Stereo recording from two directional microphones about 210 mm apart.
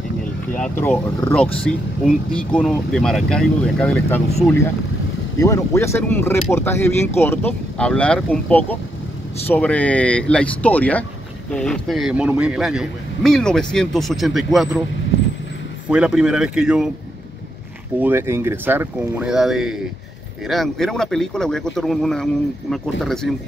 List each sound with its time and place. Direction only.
0.6 s speech: 10° left (ahead or behind)
5.4 s speech: 15° left (ahead or behind)
15.9 s speech: 5° right (ahead or behind)
18.0 s speech: 10° right (ahead or behind)